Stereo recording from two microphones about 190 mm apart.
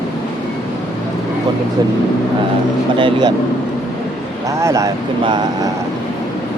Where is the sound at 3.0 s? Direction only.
20° right (ahead or behind).